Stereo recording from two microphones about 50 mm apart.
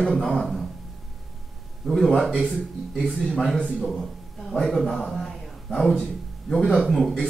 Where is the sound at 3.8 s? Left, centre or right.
Centre.